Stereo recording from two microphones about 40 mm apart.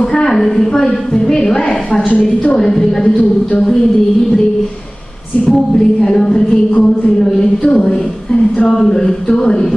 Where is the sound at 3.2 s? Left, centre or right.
Left.